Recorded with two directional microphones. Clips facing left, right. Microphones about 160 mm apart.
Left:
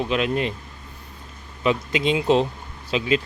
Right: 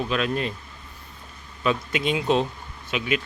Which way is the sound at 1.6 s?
20° left (ahead or behind).